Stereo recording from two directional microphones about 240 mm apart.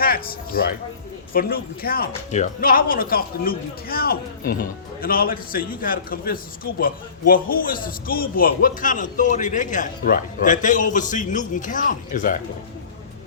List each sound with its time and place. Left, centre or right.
0.0 s a man's voice: left